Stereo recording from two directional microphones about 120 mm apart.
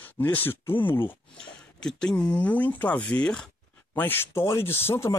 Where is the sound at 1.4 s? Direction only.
5° left (ahead or behind).